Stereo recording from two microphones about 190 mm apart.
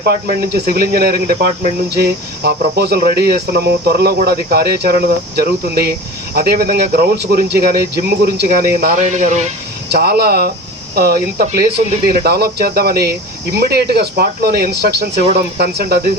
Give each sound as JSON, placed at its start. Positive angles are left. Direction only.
{"t": 0.0, "sound": "speech", "side_deg": -55}
{"t": 9.9, "sound": "speech", "side_deg": -55}